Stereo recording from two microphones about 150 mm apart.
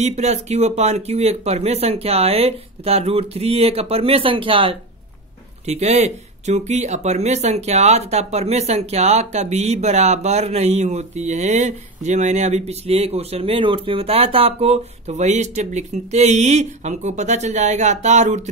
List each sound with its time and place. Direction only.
0.0 s speech: 45° right (ahead or behind)
5.7 s speech: 50° right (ahead or behind)